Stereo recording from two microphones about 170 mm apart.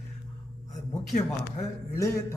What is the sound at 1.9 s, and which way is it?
Speech, 20° left (ahead or behind).